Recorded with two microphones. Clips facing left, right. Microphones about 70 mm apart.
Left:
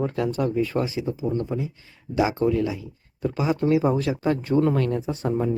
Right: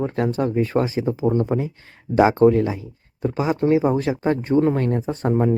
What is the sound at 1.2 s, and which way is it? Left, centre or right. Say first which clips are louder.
Speech: right 7 dB; right.